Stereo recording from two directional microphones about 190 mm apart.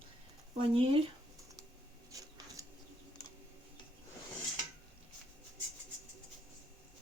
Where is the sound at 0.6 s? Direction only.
30° right (ahead or behind).